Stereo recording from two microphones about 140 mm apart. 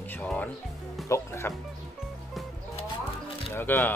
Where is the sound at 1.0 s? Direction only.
20° left (ahead or behind).